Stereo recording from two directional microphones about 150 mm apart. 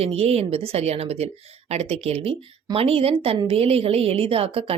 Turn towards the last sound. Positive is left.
turn(degrees=-40)  # may be behind; listen again after turning